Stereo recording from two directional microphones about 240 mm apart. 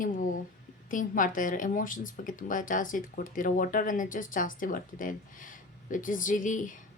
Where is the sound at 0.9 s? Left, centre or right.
Left.